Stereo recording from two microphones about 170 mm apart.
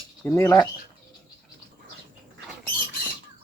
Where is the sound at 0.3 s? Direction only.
15° left (ahead or behind).